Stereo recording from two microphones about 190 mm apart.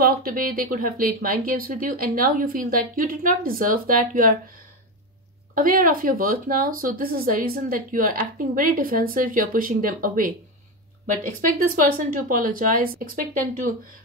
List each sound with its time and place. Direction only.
0.0 s speech: 50° right (ahead or behind)
5.5 s speech: 45° right (ahead or behind)